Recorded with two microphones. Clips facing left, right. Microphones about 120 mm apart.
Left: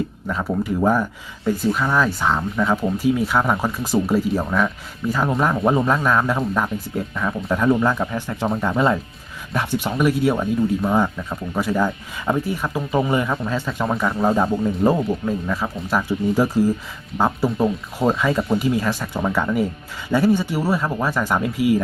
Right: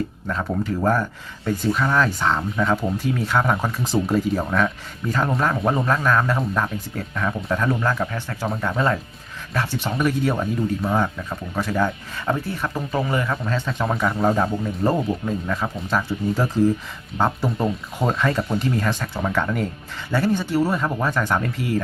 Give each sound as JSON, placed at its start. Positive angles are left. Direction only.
{"t": 0.3, "sound": "speech", "side_deg": 5}
{"t": 13.4, "sound": "speech", "side_deg": 10}